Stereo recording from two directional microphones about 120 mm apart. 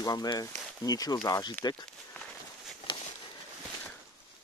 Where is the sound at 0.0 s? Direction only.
35° left (ahead or behind).